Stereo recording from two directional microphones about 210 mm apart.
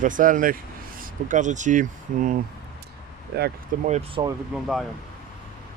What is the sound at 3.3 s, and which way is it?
Speech, 50° right (ahead or behind).